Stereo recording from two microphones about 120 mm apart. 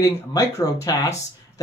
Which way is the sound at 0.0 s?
30° left (ahead or behind).